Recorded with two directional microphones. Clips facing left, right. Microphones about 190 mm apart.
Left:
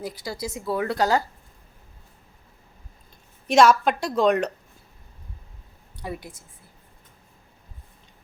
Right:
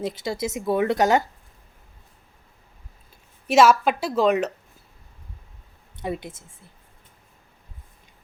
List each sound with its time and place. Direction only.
0.0 s speech: 25° right (ahead or behind)
3.4 s a woman's voice: 5° right (ahead or behind)
6.0 s speech: 20° right (ahead or behind)